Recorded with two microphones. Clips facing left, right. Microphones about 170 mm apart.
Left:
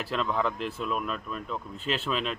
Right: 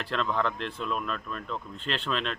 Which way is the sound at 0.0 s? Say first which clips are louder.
Even; 5° left (ahead or behind).